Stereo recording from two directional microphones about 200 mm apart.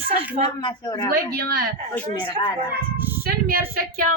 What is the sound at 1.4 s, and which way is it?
Speech, 50° right (ahead or behind).